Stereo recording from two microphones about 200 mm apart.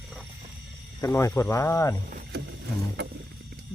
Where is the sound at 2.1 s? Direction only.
50° right (ahead or behind).